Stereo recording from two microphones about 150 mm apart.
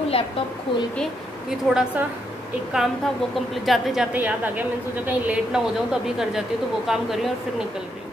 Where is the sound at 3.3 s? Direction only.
Centre (ahead or behind).